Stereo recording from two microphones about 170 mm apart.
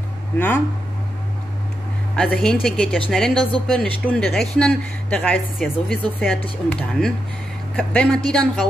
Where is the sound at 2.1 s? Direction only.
5° left (ahead or behind).